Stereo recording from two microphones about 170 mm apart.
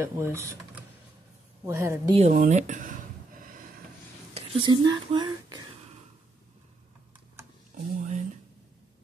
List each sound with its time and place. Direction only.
0.0 s a woman's voice: 15° right (ahead or behind)
2.1 s a sound: 45° right (ahead or behind)
4.3 s speech: 25° right (ahead or behind)
7.7 s speech: 45° right (ahead or behind)